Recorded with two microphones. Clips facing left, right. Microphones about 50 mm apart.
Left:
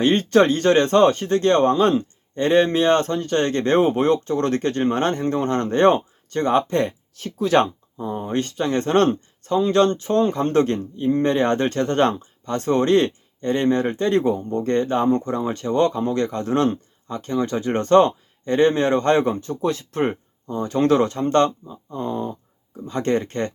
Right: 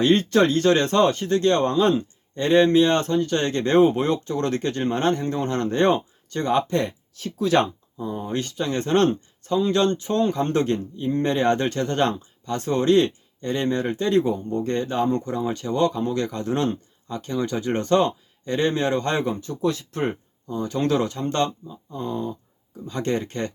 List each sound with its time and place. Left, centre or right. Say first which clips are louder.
0.2 s speech: left 2 dB; left
21.9 s speech: left 2 dB; left